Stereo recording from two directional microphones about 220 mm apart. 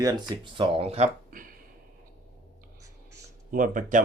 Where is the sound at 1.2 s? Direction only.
40° right (ahead or behind).